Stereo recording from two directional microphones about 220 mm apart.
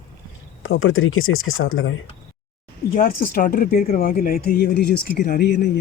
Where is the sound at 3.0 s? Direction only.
40° left (ahead or behind).